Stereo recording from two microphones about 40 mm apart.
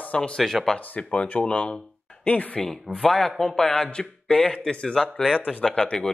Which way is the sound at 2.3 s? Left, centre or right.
Left.